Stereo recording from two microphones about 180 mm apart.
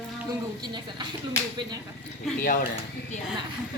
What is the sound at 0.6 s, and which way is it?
Speech, 25° right (ahead or behind).